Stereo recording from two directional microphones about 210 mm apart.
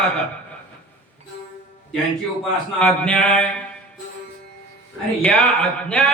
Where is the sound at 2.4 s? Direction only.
5° left (ahead or behind).